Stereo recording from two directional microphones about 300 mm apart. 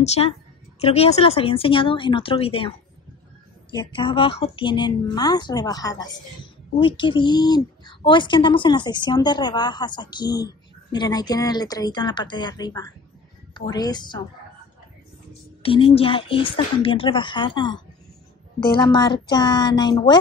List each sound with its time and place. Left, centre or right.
0.0 s speech: left
3.7 s speech: centre
15.6 s speech: centre